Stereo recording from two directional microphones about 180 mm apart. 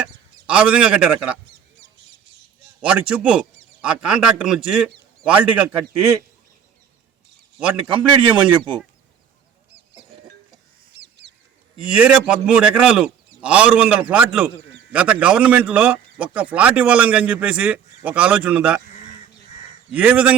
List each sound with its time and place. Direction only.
0.0 s speech: 5° right (ahead or behind)
2.8 s a man's voice: 5° right (ahead or behind)
7.6 s a man's voice: 5° right (ahead or behind)
10.9 s bird: 75° right (ahead or behind)
11.9 s a man's voice: 5° right (ahead or behind)
19.9 s a man's voice: 10° right (ahead or behind)